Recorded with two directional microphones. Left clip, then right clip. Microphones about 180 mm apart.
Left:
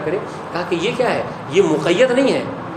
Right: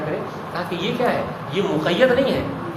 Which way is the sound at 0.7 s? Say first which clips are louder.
Left 3 dB; 45° left (ahead or behind).